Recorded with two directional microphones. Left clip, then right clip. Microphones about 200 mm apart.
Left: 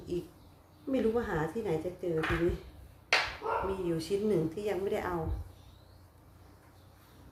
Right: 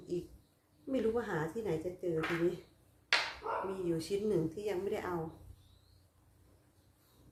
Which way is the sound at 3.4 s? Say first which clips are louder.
Left 5 dB; 30° left (ahead or behind).